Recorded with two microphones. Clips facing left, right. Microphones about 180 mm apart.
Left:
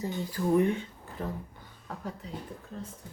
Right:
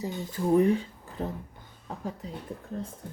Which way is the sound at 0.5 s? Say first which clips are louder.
Right 4 dB; 35° right (ahead or behind).